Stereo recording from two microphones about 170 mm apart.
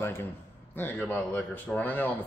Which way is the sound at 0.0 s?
15° left (ahead or behind).